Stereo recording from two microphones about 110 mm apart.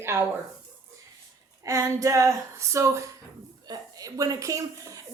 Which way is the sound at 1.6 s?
30° right (ahead or behind).